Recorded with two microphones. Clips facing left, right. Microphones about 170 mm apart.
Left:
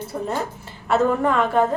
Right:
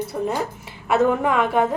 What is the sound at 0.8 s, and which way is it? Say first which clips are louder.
Speech: even; 5° right (ahead or behind).